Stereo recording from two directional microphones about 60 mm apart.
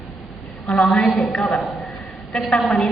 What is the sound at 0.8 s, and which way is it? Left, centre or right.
Speech, centre.